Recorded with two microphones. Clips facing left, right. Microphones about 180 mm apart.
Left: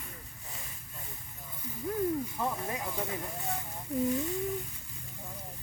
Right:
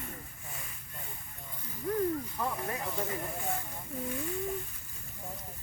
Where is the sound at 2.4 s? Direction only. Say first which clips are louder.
Left 1 dB; 10° left (ahead or behind).